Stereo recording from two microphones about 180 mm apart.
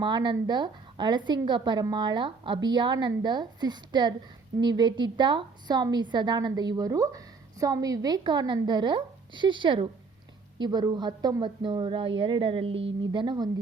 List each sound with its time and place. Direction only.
0.0 s a woman's voice: 25° right (ahead or behind)